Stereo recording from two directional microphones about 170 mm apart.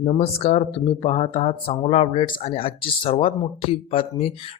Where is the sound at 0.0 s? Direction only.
35° left (ahead or behind).